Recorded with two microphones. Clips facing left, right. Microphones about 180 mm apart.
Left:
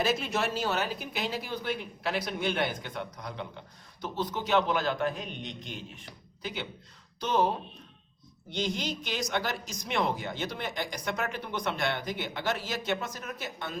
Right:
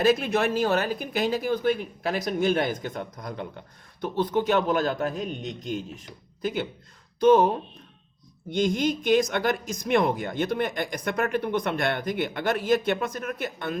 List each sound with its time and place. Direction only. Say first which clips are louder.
0.0 s speech: right 7 dB; 55° right (ahead or behind)